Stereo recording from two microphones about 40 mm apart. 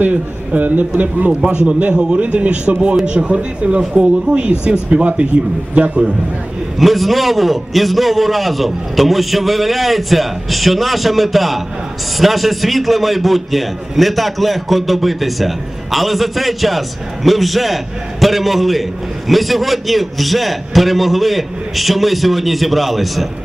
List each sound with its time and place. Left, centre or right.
0.6 s a man's voice: right
2.0 s a man's voice: right
6.8 s a man's voice: centre